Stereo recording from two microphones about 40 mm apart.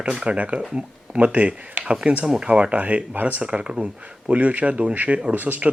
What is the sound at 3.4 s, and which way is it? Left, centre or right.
Speech, right.